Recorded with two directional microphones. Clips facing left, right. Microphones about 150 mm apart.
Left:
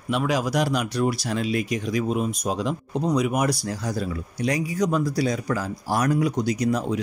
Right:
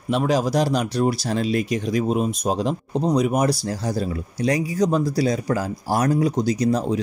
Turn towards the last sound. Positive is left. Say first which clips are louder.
# right 3 dB
turn(degrees=-30)  # may be behind; listen again after turning